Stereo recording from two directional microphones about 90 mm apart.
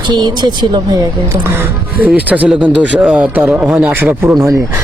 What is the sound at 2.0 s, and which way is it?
Speech, 15° right (ahead or behind).